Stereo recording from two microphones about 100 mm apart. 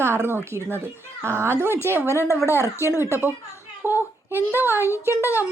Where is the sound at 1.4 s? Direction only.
25° right (ahead or behind).